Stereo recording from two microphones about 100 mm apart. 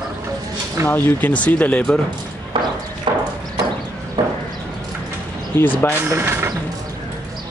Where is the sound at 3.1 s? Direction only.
55° right (ahead or behind).